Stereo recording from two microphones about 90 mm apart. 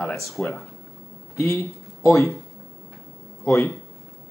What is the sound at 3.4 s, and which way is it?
Speech, 10° left (ahead or behind).